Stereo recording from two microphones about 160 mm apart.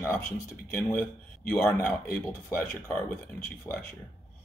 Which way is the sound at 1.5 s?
5° left (ahead or behind).